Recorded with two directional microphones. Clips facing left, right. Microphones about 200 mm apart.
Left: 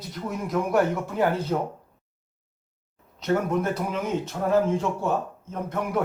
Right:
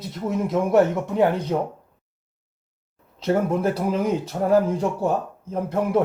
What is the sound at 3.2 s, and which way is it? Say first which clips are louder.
A man's voice: right 3 dB; 30° right (ahead or behind).